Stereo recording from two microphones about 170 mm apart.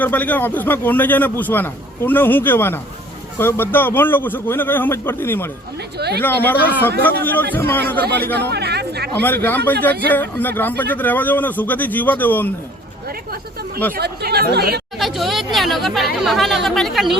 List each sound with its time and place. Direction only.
0.0 s a man's voice: 10° left (ahead or behind)
6.0 s speech: 75° right (ahead or behind)
6.2 s a man's voice: 10° left (ahead or behind)
8.4 s chatter: 75° right (ahead or behind)
9.1 s a man's voice: 10° left (ahead or behind)
13.9 s speech: 65° right (ahead or behind)
14.9 s speech: centre (ahead or behind)